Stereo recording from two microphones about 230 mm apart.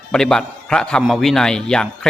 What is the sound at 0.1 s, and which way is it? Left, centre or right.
A man's voice, centre.